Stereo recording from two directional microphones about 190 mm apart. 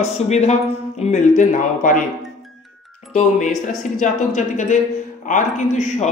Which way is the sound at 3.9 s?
40° left (ahead or behind).